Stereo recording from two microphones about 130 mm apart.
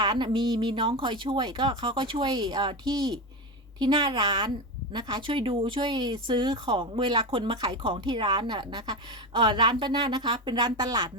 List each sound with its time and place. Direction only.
0.0 s speech: 35° right (ahead or behind)